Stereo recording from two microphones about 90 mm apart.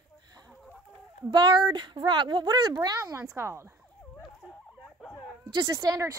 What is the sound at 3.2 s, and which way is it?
Speech, 30° right (ahead or behind).